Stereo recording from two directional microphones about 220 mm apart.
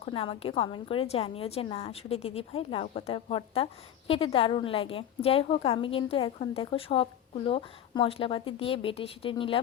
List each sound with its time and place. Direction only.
0.0 s a woman's voice: 25° left (ahead or behind)